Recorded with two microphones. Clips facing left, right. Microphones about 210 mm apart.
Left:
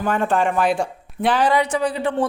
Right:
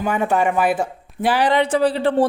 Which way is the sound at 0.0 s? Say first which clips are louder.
Right 1 dB; 10° right (ahead or behind).